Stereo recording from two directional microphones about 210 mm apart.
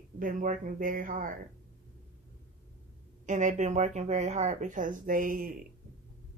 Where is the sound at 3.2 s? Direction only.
35° right (ahead or behind).